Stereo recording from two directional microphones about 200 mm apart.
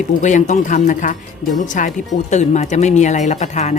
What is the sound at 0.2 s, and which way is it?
Speech, 35° left (ahead or behind).